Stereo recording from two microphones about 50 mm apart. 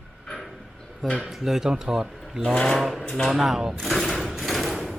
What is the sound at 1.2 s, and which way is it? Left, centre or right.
Speech, centre.